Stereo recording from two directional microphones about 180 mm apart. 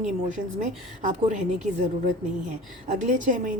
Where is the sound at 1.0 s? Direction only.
40° right (ahead or behind).